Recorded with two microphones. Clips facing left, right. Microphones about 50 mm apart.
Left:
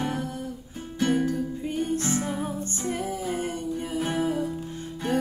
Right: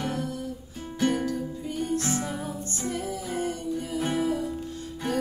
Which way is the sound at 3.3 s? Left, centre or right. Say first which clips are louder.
Even; left.